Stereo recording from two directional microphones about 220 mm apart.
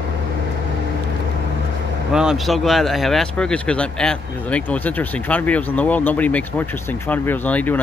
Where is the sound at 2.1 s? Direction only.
5° right (ahead or behind).